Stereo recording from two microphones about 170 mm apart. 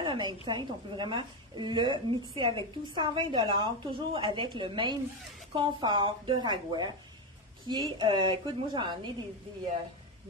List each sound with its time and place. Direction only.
0.0 s a woman's voice: 30° right (ahead or behind)